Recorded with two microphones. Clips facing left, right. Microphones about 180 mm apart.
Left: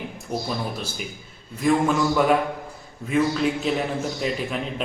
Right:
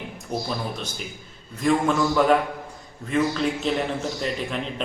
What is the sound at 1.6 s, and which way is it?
A man's voice, 5° left (ahead or behind).